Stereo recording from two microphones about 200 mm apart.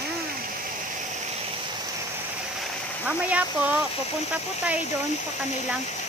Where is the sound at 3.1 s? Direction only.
5° right (ahead or behind).